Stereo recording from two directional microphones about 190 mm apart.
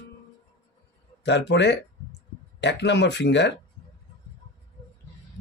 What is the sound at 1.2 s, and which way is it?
Speech, 65° left (ahead or behind).